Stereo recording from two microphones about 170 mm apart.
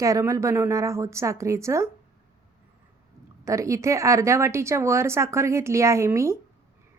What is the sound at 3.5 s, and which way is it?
Speech, 20° right (ahead or behind).